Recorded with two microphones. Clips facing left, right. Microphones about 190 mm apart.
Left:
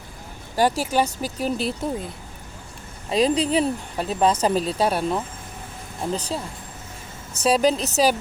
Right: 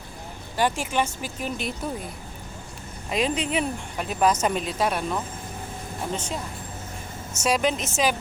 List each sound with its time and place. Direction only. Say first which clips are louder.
0.5 s speech: left 4 dB; 40° left (ahead or behind)
3.1 s speech: left 5 dB; 35° left (ahead or behind)
7.4 s speech: left 4 dB; 35° left (ahead or behind)